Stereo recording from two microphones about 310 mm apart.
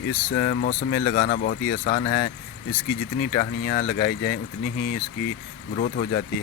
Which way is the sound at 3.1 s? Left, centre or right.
Left.